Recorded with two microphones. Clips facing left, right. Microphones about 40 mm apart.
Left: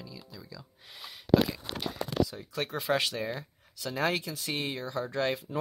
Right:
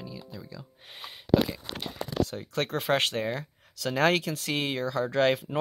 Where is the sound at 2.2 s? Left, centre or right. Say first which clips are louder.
Right 2 dB; right.